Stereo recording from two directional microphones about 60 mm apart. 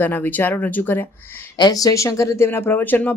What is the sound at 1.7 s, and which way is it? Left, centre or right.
Speech, left.